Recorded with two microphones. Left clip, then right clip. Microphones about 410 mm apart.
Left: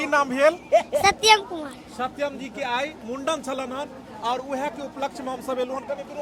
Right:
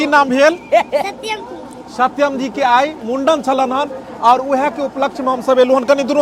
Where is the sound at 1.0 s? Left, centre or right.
Left.